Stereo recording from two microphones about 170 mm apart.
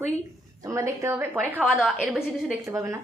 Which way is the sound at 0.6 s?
15° right (ahead or behind).